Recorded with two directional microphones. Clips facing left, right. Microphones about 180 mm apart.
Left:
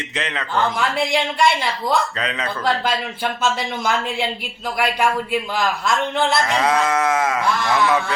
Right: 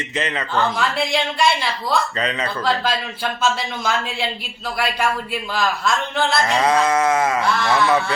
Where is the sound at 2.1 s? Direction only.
Centre (ahead or behind).